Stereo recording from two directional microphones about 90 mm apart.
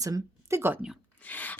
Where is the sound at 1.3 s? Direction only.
20° left (ahead or behind).